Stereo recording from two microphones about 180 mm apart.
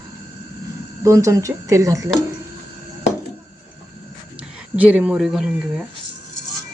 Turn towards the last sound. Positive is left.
turn(degrees=0)  # may be behind; listen again after turning